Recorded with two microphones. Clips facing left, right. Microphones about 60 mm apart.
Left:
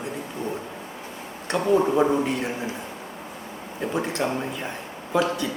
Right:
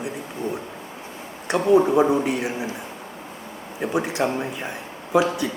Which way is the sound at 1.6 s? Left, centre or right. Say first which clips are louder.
Right 3 dB; centre.